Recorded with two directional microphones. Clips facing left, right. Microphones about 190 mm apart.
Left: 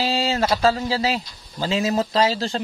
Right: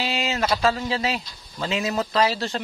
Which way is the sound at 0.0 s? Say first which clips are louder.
Left 4 dB; 30° left (ahead or behind).